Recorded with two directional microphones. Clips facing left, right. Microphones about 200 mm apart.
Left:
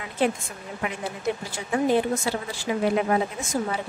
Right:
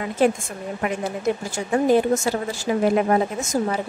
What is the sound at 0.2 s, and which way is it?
Speech, 45° right (ahead or behind).